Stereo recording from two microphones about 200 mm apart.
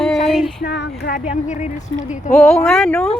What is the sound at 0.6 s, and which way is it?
Speech, 55° left (ahead or behind).